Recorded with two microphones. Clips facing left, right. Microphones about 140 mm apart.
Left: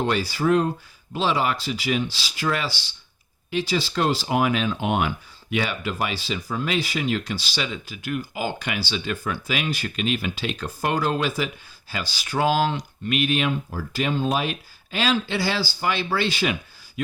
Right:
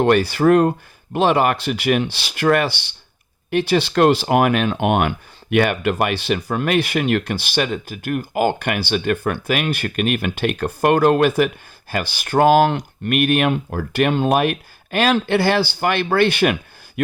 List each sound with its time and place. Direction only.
0.0 s speech: 60° right (ahead or behind)